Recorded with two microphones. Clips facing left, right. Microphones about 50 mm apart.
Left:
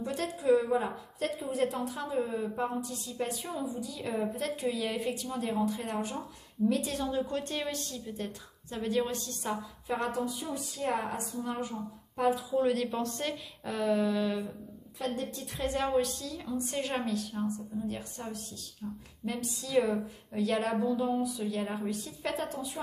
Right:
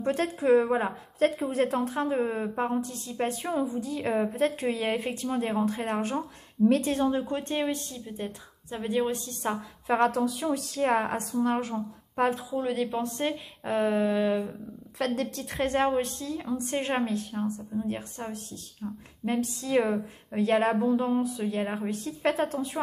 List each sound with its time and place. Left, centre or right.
0.0 s a woman's voice: right
6.1 s speech: right
6.9 s a woman's voice: right
9.8 s a woman's voice: right
11.0 s a woman's voice: right
12.2 s speech: right
12.5 s a woman's voice: centre
13.0 s a woman's voice: right
15.0 s a woman's voice: right
15.9 s a woman's voice: right